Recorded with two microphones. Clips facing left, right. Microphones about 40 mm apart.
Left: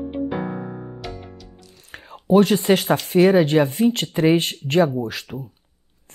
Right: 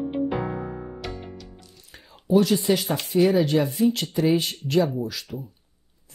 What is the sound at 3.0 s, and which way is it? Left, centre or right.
Speech, left.